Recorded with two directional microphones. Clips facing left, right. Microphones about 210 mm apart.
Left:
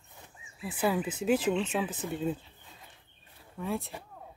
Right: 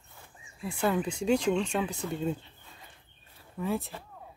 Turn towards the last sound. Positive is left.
turn(degrees=0)  # may be behind; listen again after turning